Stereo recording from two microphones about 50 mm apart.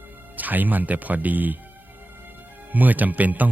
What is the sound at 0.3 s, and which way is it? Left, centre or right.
Speech, right.